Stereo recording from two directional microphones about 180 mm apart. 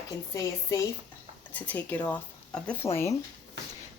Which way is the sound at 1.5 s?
10° left (ahead or behind).